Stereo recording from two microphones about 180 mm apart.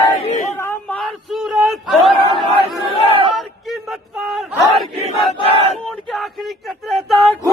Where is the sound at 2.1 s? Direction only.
30° right (ahead or behind).